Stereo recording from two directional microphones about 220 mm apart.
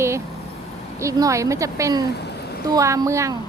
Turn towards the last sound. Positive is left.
turn(degrees=-15)  # may be behind; listen again after turning